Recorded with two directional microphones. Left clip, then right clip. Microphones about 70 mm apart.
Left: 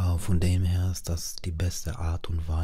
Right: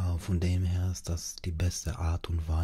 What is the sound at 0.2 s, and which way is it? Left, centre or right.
Speech, left.